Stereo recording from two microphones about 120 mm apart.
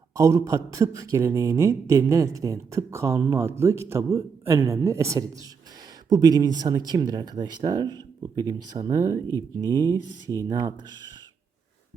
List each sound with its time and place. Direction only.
0.1 s speech: 25° right (ahead or behind)